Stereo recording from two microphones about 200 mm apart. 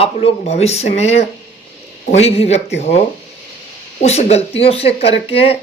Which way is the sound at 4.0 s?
35° left (ahead or behind).